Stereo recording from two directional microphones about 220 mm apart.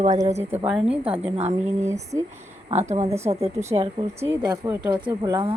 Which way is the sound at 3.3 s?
25° right (ahead or behind).